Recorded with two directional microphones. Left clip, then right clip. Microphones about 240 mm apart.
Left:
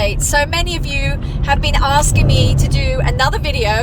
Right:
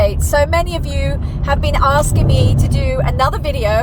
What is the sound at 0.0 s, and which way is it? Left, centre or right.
Speech, centre.